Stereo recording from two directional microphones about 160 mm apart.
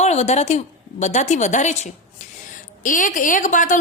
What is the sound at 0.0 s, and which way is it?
A woman's voice, 45° left (ahead or behind).